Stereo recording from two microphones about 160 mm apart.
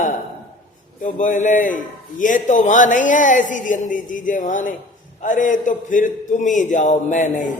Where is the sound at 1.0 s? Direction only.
55° left (ahead or behind).